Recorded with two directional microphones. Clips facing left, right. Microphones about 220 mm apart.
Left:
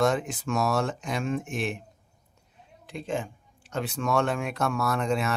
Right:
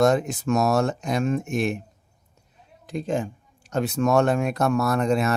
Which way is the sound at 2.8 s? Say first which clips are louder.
Right 5 dB; 40° right (ahead or behind).